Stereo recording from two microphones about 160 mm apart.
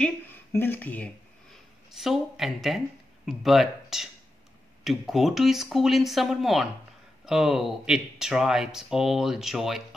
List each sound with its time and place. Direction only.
0.0 s speech: 15° left (ahead or behind)